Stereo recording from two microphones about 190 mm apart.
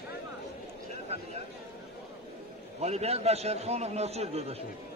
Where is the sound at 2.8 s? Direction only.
35° right (ahead or behind).